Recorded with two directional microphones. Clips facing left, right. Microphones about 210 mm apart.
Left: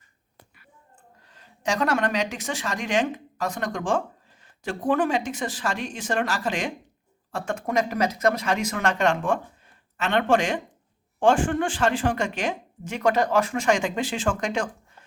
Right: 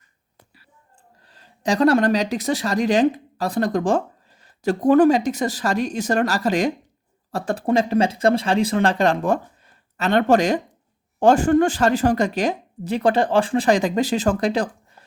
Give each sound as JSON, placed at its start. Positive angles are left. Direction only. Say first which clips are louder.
{"t": 1.3, "sound": "speech", "louder": "right 5 dB", "side_deg": -35}